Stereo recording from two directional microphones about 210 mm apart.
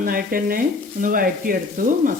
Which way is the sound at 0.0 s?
45° right (ahead or behind).